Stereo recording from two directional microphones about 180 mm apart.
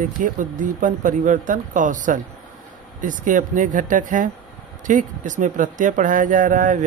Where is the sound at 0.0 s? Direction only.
45° right (ahead or behind).